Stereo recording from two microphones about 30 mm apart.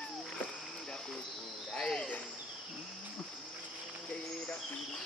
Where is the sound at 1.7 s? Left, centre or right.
Left.